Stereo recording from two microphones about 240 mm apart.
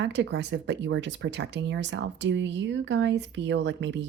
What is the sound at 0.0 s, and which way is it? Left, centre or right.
Speech, right.